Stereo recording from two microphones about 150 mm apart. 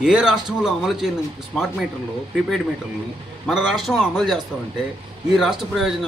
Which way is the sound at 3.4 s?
Centre (ahead or behind).